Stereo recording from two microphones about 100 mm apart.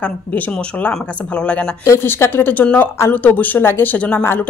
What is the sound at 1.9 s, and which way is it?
Speech, 25° left (ahead or behind).